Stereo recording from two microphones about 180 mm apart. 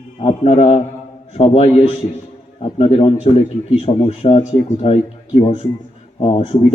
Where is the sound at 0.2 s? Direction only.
35° left (ahead or behind).